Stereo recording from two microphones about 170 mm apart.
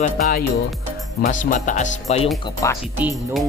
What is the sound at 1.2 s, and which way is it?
Speech, 50° left (ahead or behind).